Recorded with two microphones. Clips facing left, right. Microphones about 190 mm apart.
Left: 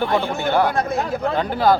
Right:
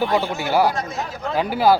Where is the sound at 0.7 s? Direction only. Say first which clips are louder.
Left 5 dB; 55° left (ahead or behind).